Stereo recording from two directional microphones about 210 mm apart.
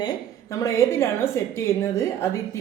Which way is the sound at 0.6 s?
15° left (ahead or behind).